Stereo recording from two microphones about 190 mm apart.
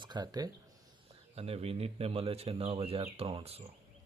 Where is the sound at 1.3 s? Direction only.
30° right (ahead or behind).